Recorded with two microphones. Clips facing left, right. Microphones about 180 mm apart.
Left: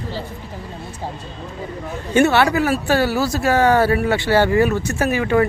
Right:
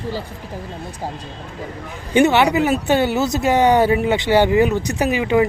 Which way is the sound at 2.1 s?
15° right (ahead or behind).